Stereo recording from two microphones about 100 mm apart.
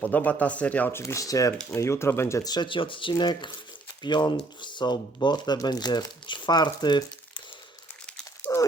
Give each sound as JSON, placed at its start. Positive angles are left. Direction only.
{"t": 0.0, "sound": "speech", "side_deg": 15}
{"t": 2.4, "sound": "speech", "side_deg": 45}
{"t": 8.5, "sound": "a sound", "side_deg": 35}